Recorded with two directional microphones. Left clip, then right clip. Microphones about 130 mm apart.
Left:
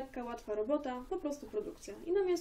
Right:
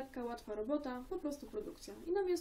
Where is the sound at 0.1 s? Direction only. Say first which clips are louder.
Left 4 dB; 40° right (ahead or behind).